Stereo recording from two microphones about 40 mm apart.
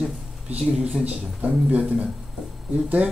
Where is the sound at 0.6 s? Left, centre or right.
Right.